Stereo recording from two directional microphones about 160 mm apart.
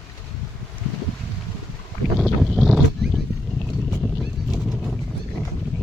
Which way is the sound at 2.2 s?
Centre (ahead or behind).